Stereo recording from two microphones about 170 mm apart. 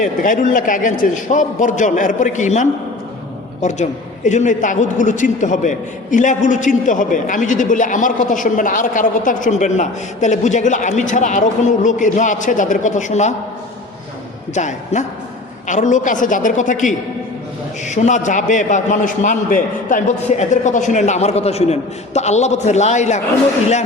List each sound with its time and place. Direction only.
0.0 s a man's voice: 50° left (ahead or behind)
14.5 s a man's voice: 45° left (ahead or behind)